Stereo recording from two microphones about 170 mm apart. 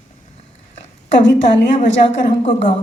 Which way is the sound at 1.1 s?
90° left.